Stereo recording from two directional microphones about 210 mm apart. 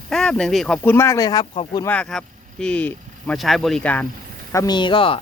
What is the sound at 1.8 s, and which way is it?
Speech, 5° left (ahead or behind).